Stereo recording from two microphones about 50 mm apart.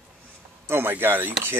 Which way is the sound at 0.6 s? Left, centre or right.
Right.